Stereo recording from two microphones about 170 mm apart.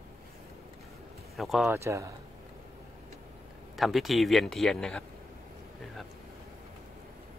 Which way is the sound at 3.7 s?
Centre (ahead or behind).